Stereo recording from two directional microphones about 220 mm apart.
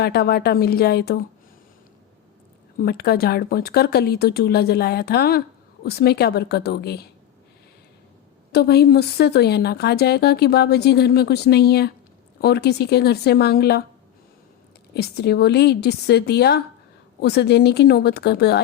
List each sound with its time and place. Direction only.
0.0 s speech: 45° left (ahead or behind)
2.7 s speech: 45° left (ahead or behind)
8.5 s speech: 45° left (ahead or behind)
14.9 s speech: 45° left (ahead or behind)